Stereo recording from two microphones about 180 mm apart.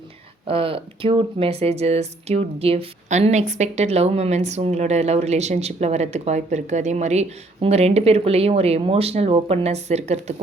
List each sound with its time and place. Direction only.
0.4 s speech: 30° right (ahead or behind)